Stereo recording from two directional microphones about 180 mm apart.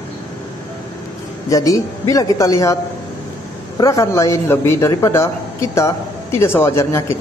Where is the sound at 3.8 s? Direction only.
20° left (ahead or behind).